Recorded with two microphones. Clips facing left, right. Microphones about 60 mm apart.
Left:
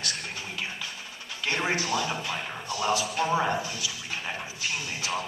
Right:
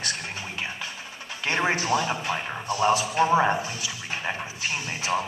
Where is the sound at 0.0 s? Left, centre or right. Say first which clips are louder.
Right 3 dB; right.